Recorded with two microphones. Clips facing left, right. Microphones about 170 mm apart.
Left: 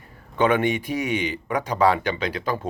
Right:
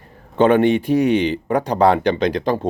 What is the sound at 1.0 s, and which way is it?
Speech, 45° right (ahead or behind).